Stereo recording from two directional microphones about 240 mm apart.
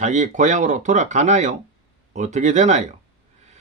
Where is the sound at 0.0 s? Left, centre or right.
Right.